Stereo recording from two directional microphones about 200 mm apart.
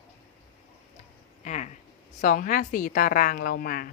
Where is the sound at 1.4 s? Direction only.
35° left (ahead or behind).